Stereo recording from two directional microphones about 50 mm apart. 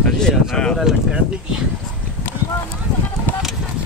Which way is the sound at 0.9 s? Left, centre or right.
Centre.